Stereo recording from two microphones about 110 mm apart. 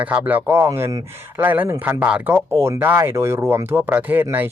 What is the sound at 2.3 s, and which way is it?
Speech, 25° right (ahead or behind).